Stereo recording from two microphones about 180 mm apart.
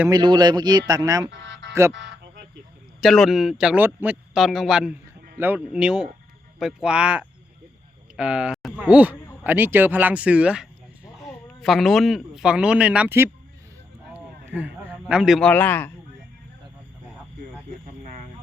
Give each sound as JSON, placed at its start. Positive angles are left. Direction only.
{"t": 0.1, "sound": "speech", "side_deg": -25}
{"t": 1.3, "sound": "speech", "side_deg": -75}
{"t": 3.0, "sound": "a man's voice", "side_deg": 0}
{"t": 14.1, "sound": "a sound", "side_deg": -10}
{"t": 15.0, "sound": "a man's voice", "side_deg": -5}